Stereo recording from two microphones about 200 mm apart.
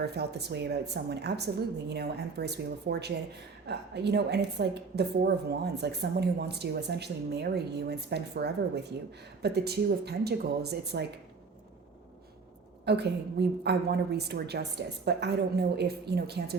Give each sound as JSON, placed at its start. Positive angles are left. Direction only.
{"t": 0.0, "sound": "a woman's voice", "side_deg": -55}
{"t": 12.8, "sound": "a woman's voice", "side_deg": -55}